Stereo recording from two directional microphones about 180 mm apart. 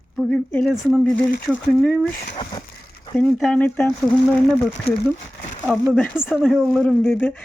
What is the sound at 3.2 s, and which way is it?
Speech, centre (ahead or behind).